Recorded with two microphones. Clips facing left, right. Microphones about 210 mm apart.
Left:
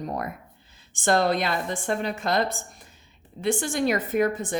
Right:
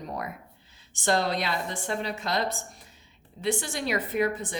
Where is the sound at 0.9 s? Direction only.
50° left (ahead or behind).